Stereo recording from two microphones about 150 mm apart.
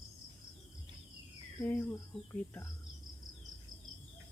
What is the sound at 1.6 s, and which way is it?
Speech, 10° left (ahead or behind).